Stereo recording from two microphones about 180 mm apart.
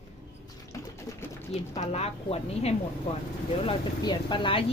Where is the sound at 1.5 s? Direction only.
40° left (ahead or behind).